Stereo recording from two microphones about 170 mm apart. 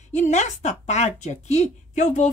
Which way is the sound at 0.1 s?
40° left (ahead or behind).